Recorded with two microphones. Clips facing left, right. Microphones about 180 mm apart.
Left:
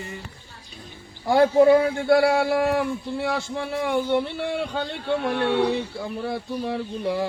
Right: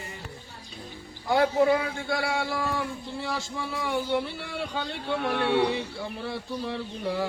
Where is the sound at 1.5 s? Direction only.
50° left (ahead or behind).